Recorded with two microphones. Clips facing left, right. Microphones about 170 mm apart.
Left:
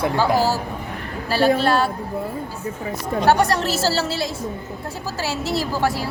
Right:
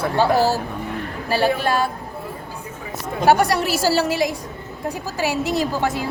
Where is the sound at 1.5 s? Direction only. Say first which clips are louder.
Left 2 dB; 15° right (ahead or behind).